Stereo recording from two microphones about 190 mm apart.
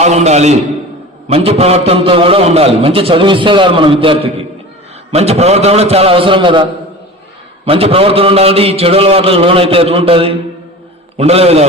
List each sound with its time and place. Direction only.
0.0 s a man's voice: 35° right (ahead or behind)